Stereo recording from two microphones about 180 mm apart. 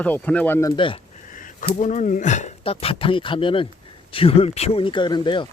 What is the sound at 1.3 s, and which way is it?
Speech, 45° left (ahead or behind).